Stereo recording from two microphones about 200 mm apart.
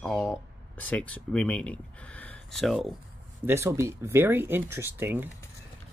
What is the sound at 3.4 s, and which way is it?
Speech, 10° right (ahead or behind).